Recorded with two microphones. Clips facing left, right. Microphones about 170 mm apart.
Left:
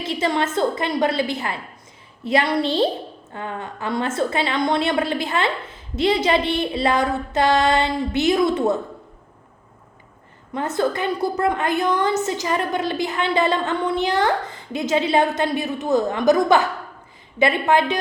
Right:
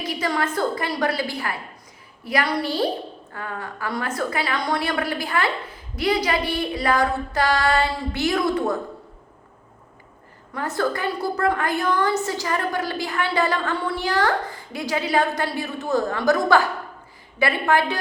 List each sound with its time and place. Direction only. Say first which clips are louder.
0.0 s a woman's voice: left 3 dB; 25° left (ahead or behind)
10.5 s a woman's voice: left 3 dB; 20° left (ahead or behind)